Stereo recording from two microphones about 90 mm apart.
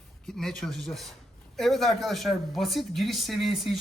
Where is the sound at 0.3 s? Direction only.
5° left (ahead or behind).